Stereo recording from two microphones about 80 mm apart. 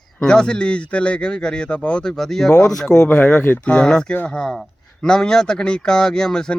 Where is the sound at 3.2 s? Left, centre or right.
Left.